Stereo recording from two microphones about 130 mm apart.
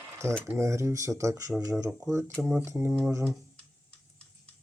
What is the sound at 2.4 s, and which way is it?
Speech, 10° right (ahead or behind).